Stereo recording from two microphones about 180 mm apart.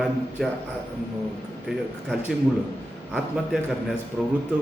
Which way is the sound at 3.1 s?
Centre (ahead or behind).